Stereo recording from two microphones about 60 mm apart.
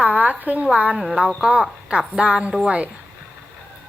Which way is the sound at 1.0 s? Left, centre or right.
Centre.